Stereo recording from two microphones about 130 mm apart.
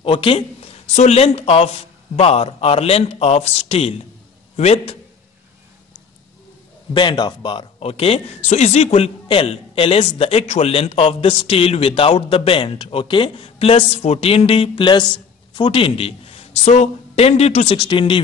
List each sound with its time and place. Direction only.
0.0 s speech: 45° left (ahead or behind)
0.9 s a man's voice: 55° left (ahead or behind)
6.9 s a man's voice: 35° left (ahead or behind); by 17.7 s 55° left (ahead or behind)
17.7 s speech: 40° left (ahead or behind)